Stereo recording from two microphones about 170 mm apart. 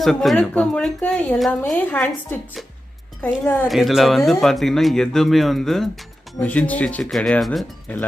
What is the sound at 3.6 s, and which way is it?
Speech, centre (ahead or behind).